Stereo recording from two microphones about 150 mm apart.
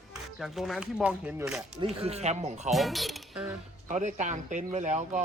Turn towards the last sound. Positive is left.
turn(degrees=-55)  # may be behind; listen again after turning